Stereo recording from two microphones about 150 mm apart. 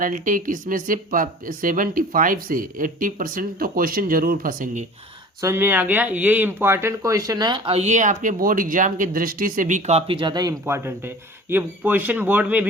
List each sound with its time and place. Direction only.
0.0 s speech: 65° right (ahead or behind)
5.4 s speech: 15° right (ahead or behind)
7.7 s speech: 50° right (ahead or behind); by 12.6 s 10° right (ahead or behind)